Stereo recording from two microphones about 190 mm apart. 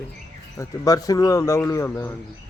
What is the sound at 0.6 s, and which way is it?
A man's voice, 20° left (ahead or behind).